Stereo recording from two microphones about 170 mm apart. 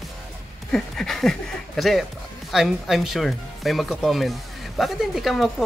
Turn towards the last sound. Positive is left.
turn(degrees=0)  # may be behind; listen again after turning